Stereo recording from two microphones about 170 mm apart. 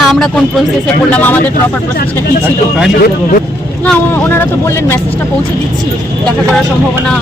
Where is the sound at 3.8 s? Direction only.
10° left (ahead or behind).